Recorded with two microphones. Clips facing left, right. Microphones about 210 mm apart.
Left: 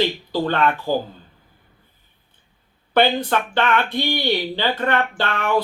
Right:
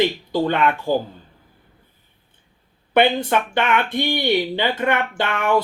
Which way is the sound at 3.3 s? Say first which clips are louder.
Even; 15° right (ahead or behind).